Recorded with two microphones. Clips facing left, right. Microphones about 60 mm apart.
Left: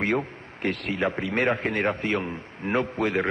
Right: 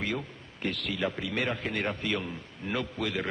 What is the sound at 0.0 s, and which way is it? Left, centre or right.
A man's voice, left.